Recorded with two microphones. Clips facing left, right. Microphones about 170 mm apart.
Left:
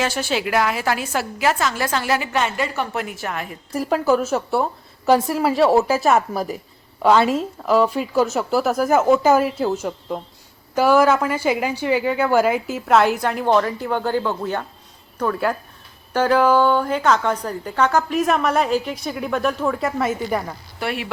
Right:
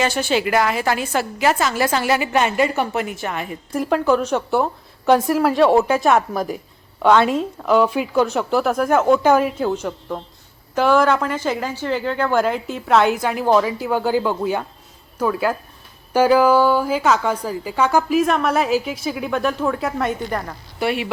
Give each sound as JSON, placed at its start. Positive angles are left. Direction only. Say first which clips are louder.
{"t": 0.0, "sound": "a woman's voice", "louder": "right 3 dB", "side_deg": 0}
{"t": 2.9, "sound": "a woman's voice", "louder": "right 2 dB", "side_deg": 0}